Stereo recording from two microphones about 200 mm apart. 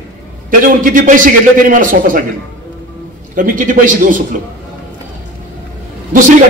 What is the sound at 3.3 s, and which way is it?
Speech, 45° right (ahead or behind).